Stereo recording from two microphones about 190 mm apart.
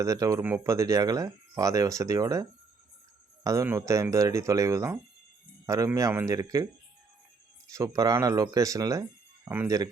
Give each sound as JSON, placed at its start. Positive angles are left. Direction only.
{"t": 0.0, "sound": "speech", "side_deg": -15}
{"t": 7.7, "sound": "speech", "side_deg": -20}